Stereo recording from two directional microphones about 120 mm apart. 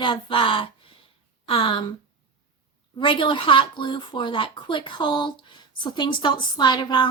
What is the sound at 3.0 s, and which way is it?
Speech, 45° left (ahead or behind).